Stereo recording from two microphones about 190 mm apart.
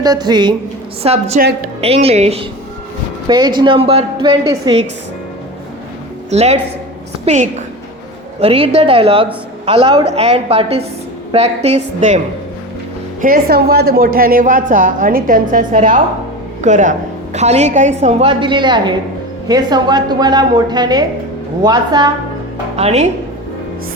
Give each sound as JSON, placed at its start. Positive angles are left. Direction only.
{"t": 0.0, "sound": "a woman's voice", "side_deg": -20}
{"t": 1.0, "sound": "a woman's voice", "side_deg": -35}
{"t": 1.4, "sound": "a woman's voice", "side_deg": -50}
{"t": 1.8, "sound": "a woman's voice", "side_deg": -30}
{"t": 3.2, "sound": "a woman's voice", "side_deg": -20}
{"t": 6.3, "sound": "a woman's voice", "side_deg": -35}
{"t": 13.2, "sound": "a woman's voice", "side_deg": -50}
{"t": 22.7, "sound": "speech", "side_deg": -35}